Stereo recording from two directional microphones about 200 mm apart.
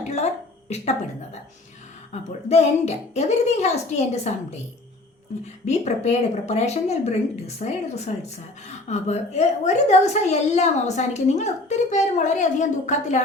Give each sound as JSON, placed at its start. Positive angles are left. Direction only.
{"t": 0.7, "sound": "speech", "side_deg": 35}
{"t": 2.5, "sound": "speech", "side_deg": 35}
{"t": 5.6, "sound": "speech", "side_deg": 35}